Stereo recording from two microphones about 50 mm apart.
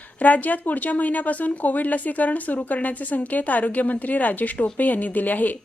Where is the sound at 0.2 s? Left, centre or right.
Left.